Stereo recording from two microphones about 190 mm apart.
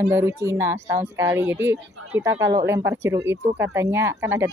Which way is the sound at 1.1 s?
15° right (ahead or behind).